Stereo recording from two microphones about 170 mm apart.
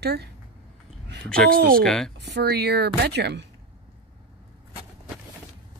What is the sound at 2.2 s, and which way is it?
Speech, 80° right.